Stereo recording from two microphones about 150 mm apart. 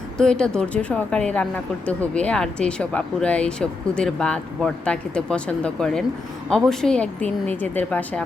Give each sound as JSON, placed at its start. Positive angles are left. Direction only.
{"t": 0.2, "sound": "speech", "side_deg": 5}